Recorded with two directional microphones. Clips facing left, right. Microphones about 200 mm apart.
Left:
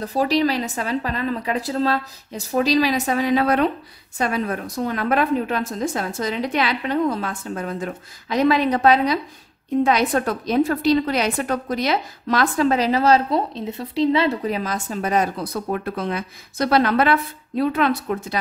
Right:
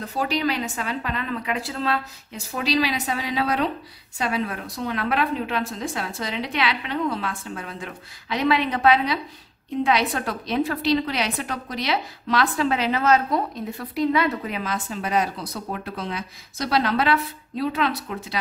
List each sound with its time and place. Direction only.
0.0 s a woman's voice: 35° left (ahead or behind)